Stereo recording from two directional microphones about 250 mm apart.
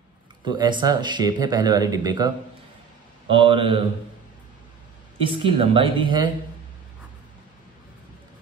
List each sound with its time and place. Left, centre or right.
0.5 s speech: centre
5.2 s speech: right